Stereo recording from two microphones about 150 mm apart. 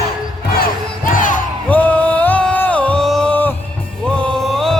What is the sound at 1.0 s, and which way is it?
Music, 60° left (ahead or behind).